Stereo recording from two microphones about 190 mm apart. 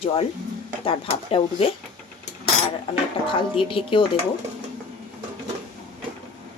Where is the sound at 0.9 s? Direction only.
30° left (ahead or behind).